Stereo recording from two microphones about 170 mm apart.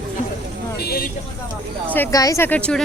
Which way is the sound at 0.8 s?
65° left (ahead or behind).